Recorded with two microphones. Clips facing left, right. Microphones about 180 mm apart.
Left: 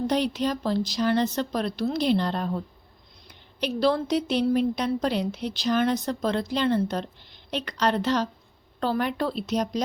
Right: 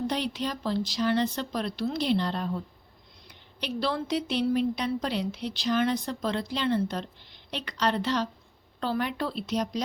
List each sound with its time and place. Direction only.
0.1 s a woman's voice: 45° left (ahead or behind)
3.6 s a woman's voice: 40° left (ahead or behind)